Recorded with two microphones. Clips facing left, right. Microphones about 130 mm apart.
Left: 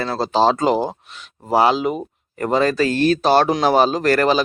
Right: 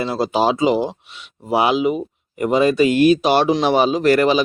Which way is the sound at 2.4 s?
10° right (ahead or behind).